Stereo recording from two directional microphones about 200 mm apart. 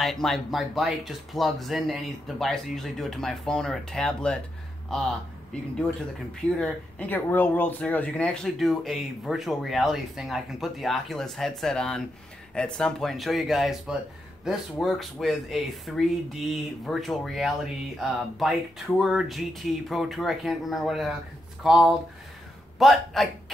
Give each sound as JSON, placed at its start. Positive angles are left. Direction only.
{"t": 0.0, "sound": "a man's voice", "side_deg": 0}